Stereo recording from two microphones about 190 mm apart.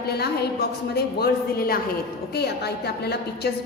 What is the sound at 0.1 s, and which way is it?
A woman's voice, 55° left (ahead or behind).